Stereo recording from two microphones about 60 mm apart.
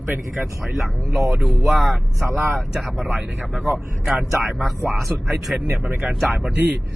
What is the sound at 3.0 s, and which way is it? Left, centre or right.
Speech, right.